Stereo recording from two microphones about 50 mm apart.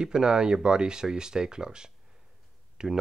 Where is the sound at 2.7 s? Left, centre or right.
Centre.